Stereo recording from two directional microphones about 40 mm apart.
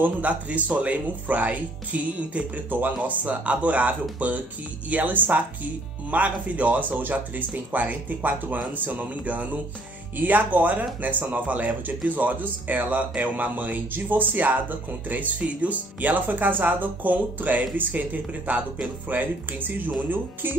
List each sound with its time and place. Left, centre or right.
0.0 s speech: right
6.9 s speech: right